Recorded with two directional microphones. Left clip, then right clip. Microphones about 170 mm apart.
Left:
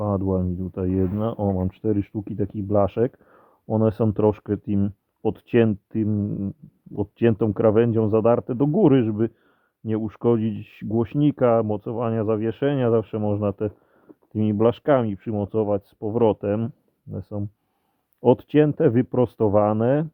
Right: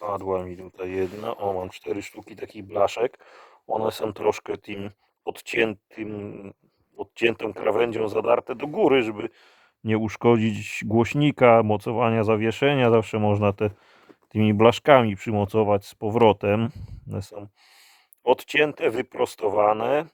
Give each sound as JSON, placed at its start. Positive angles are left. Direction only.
{"t": 0.1, "sound": "speech", "side_deg": -20}